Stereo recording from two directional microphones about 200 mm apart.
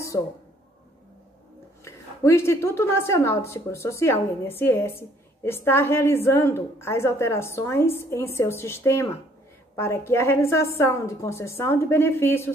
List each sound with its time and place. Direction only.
1.9 s a woman's voice: 15° left (ahead or behind)